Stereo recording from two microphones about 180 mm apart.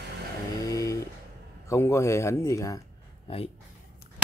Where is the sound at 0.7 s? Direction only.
20° left (ahead or behind).